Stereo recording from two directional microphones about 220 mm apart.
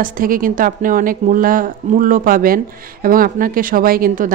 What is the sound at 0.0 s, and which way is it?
Speech, 40° right (ahead or behind).